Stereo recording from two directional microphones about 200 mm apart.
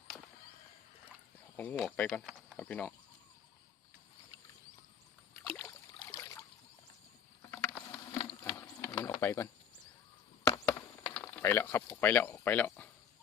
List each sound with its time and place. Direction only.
1.5 s speech: 10° left (ahead or behind)
5.4 s rowboat: 10° left (ahead or behind)
8.2 s mechanisms: 25° left (ahead or behind)
8.5 s a sound: 10° left (ahead or behind)
10.4 s chop: 15° left (ahead or behind)
11.1 s speech: 10° left (ahead or behind)